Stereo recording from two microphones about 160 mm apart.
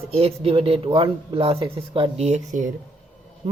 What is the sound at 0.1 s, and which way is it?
Speech, 40° right (ahead or behind).